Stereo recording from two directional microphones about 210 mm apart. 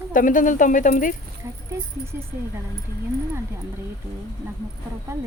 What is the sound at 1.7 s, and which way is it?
Speech, 10° right (ahead or behind).